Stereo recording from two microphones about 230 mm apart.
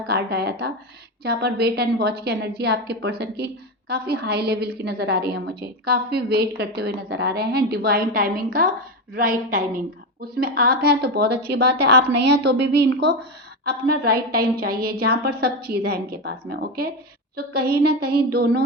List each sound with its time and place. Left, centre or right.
0.1 s a woman's voice: right